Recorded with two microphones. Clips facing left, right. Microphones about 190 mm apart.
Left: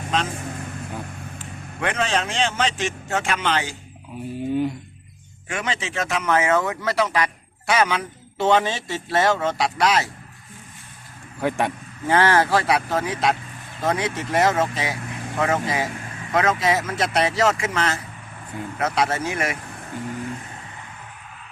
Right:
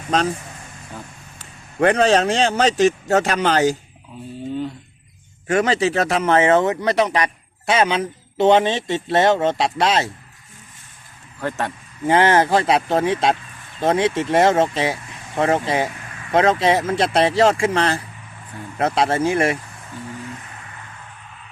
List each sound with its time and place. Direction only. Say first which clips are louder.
0.1 s speech: right 5 dB; 40° right (ahead or behind)
1.4 s a man's voice: right 11 dB; 40° right (ahead or behind)
4.4 s a sound: left 3 dB; 15° left (ahead or behind)
5.5 s a man's voice: right 10 dB; 40° right (ahead or behind)
11.3 s speech: left 2 dB; 15° left (ahead or behind)
12.0 s a man's voice: right 3 dB; 20° right (ahead or behind)